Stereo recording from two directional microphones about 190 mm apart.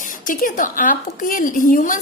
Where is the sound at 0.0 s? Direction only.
45° left (ahead or behind).